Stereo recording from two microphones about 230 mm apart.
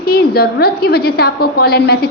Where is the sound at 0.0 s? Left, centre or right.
Left.